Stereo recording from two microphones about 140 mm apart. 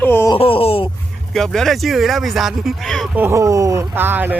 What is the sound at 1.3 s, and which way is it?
Speech, 5° left (ahead or behind).